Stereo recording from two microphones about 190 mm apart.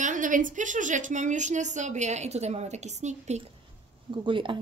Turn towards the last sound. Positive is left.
turn(degrees=-25)  # may be behind; listen again after turning